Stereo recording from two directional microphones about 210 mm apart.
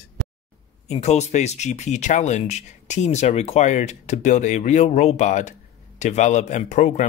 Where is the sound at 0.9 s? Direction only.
30° left (ahead or behind).